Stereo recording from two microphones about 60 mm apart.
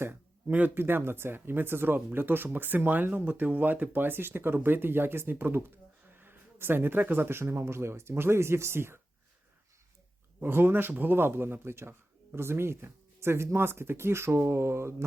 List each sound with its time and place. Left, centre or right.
0.0 s a sound: right
0.7 s speech: right
10.4 s speech: right